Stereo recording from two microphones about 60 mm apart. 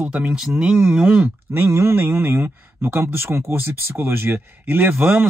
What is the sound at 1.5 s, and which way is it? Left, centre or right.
Speech, right.